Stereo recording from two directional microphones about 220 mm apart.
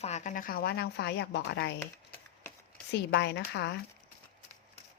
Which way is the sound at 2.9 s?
50° left (ahead or behind).